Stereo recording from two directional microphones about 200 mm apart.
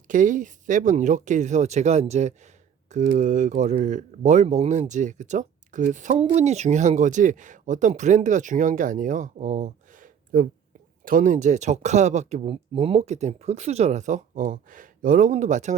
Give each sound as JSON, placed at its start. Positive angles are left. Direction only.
{"t": 0.1, "sound": "speech", "side_deg": -40}